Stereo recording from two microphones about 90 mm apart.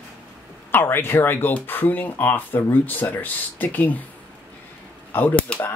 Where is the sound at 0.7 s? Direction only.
25° left (ahead or behind).